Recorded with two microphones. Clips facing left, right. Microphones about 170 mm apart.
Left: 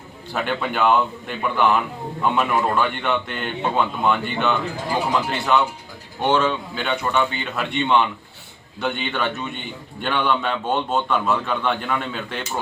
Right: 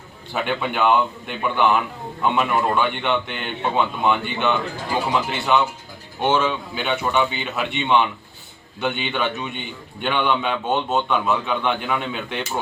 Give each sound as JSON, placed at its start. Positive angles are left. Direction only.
{"t": 0.3, "sound": "a man's voice", "side_deg": 0}